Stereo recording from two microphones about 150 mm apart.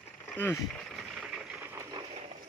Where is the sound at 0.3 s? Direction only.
15° left (ahead or behind).